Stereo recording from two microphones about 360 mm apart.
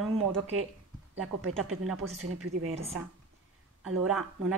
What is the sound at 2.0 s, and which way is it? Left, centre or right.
Speech, right.